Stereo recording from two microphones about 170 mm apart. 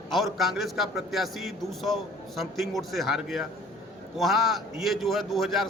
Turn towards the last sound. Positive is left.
turn(degrees=0)  # may be behind; listen again after turning